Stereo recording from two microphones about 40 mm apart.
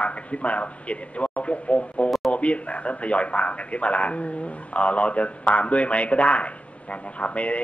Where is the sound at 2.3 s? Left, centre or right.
Left.